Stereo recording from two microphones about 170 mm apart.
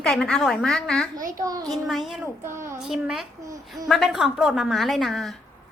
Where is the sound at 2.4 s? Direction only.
15° right (ahead or behind).